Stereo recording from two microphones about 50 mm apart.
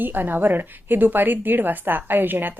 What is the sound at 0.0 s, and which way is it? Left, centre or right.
A woman's voice, right.